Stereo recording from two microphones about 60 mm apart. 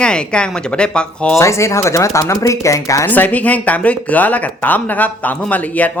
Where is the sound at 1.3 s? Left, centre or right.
Left.